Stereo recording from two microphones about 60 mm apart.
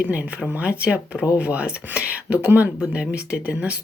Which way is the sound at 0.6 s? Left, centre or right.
Right.